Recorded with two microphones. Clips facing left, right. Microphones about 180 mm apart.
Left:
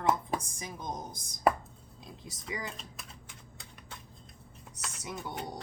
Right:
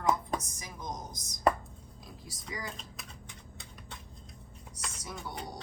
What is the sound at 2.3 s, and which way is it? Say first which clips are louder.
Speech: left 2 dB; 20° left (ahead or behind).